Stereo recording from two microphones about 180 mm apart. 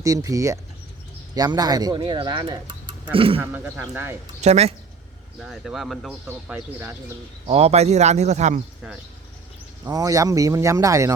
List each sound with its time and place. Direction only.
0.0 s speech: 20° right (ahead or behind)
3.4 s speech: 10° right (ahead or behind)
4.4 s speech: 40° right (ahead or behind)
5.4 s speech: centre (ahead or behind)
6.2 s speech: 10° right (ahead or behind)
7.4 s speech: 35° right (ahead or behind)
9.8 s speech: 20° right (ahead or behind)